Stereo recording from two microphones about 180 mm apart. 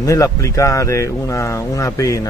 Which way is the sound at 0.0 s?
20° left (ahead or behind).